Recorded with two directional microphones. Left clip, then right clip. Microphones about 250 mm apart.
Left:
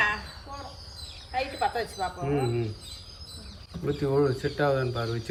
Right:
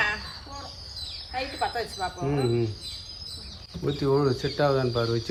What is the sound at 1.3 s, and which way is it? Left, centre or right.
Speech, centre.